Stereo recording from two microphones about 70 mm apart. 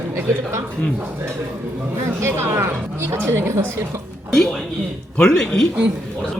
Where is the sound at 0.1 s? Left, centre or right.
Right.